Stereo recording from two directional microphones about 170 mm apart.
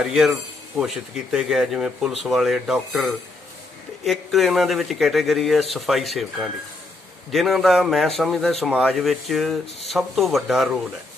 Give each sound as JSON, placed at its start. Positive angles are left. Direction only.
{"t": 0.0, "sound": "speech", "side_deg": -5}